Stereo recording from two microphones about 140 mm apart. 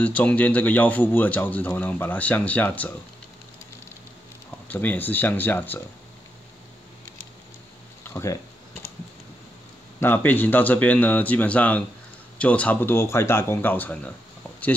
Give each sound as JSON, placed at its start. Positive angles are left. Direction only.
{"t": 0.0, "sound": "speech", "side_deg": 10}
{"t": 4.6, "sound": "speech", "side_deg": 10}
{"t": 8.0, "sound": "speech", "side_deg": 20}
{"t": 9.9, "sound": "speech", "side_deg": 15}